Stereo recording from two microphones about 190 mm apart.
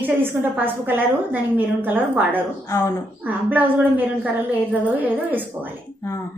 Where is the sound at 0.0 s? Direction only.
10° right (ahead or behind).